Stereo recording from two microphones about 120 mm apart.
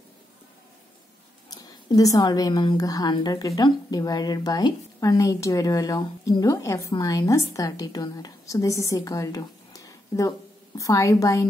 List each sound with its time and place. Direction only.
1.5 s a woman's voice: 30° left (ahead or behind)